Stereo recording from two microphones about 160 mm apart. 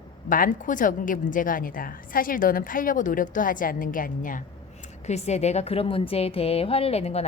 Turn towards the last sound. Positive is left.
turn(degrees=40)  # may be behind; listen again after turning